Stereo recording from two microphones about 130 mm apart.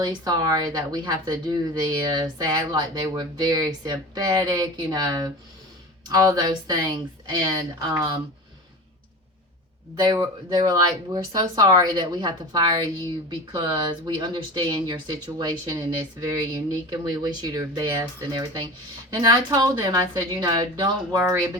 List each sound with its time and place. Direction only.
0.0 s speech: 30° right (ahead or behind)
9.9 s speech: 35° right (ahead or behind)